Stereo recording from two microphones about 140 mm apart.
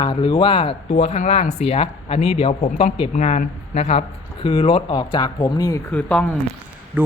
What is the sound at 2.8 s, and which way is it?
Speech, 60° left (ahead or behind).